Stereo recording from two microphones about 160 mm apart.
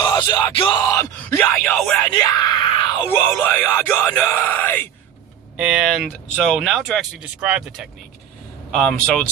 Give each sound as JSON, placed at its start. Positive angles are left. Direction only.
{"t": 0.0, "sound": "yell", "side_deg": 25}
{"t": 1.2, "sound": "speech", "side_deg": 5}
{"t": 2.1, "sound": "screaming", "side_deg": 25}
{"t": 3.2, "sound": "speech", "side_deg": 5}
{"t": 5.5, "sound": "speech", "side_deg": -5}